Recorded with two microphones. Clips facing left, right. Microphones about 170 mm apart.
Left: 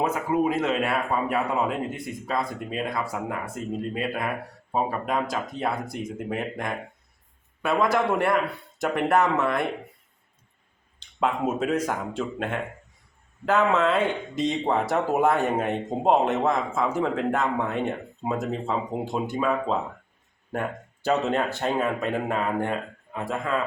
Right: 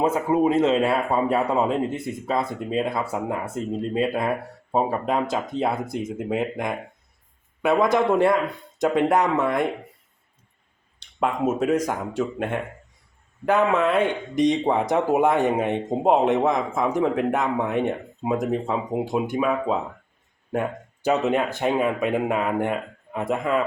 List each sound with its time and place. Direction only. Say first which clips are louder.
0.0 s a man's voice: right 4 dB; 25° right (ahead or behind)
11.6 s a man's voice: right 3 dB; 10° right (ahead or behind)